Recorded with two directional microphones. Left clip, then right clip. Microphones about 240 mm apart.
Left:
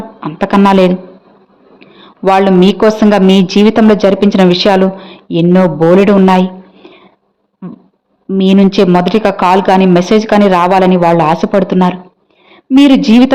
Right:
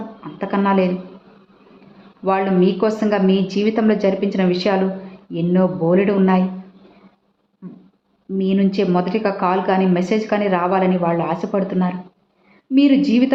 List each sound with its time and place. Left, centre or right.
0.2 s a woman's voice: left
2.2 s a woman's voice: left
8.4 s a woman's voice: left